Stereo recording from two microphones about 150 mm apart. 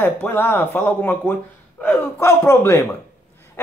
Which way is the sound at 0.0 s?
15° left (ahead or behind).